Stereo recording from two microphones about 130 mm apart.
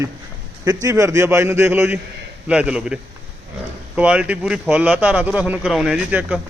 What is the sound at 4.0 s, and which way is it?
A man's voice, 10° right (ahead or behind).